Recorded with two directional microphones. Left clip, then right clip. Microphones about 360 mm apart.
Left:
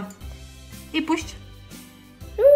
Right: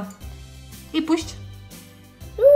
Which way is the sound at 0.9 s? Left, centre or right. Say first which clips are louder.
Right 2 dB; centre.